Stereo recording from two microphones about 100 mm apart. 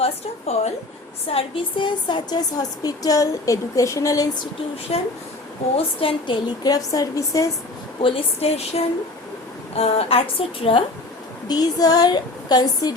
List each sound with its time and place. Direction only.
0.0 s a woman's voice: 90° left
1.3 s a woman's voice: 75° left (ahead or behind)
2.0 s a woman's voice: 50° left (ahead or behind)
4.9 s speech: 80° left
5.7 s a woman's voice: 70° left (ahead or behind)
6.6 s a woman's voice: 35° left (ahead or behind)
8.0 s a woman's voice: 80° left
9.7 s a woman's voice: 75° left (ahead or behind)
11.4 s a woman's voice: 40° left (ahead or behind)